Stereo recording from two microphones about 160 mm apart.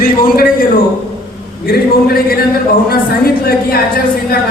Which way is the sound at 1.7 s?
70° left (ahead or behind).